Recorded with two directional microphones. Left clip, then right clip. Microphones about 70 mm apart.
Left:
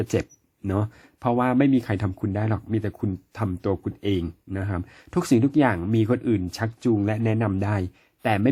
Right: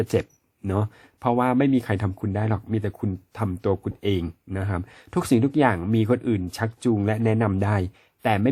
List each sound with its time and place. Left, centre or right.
0.1 s speech: centre
3.8 s speech: right
4.5 s speech: right
7.4 s speech: right
8.2 s speech: right